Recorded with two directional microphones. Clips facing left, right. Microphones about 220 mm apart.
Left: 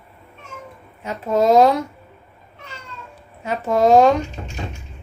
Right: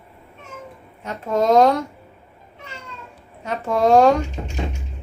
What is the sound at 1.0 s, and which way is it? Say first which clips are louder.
Speech: left 2 dB; 5° left (ahead or behind).